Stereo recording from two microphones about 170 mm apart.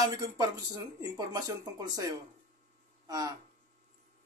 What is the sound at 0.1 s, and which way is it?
Speech, 25° right (ahead or behind).